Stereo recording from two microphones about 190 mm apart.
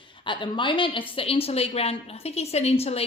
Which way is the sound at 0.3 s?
25° left (ahead or behind).